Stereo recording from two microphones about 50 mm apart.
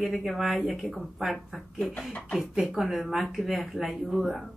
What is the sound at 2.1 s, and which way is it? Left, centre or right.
Speech, centre.